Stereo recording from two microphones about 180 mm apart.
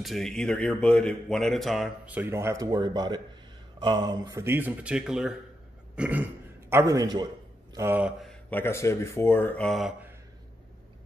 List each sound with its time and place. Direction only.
0.0 s speech: centre (ahead or behind)
5.9 s a sound: 10° right (ahead or behind)
6.7 s a man's voice: 15° right (ahead or behind)
8.2 s speech: 5° left (ahead or behind)